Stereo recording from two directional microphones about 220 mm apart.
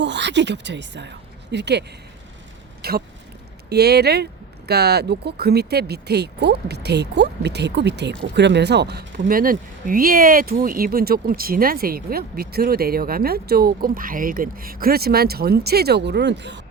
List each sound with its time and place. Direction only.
0.0 s speech: 50° right (ahead or behind)
2.8 s speech: 45° right (ahead or behind)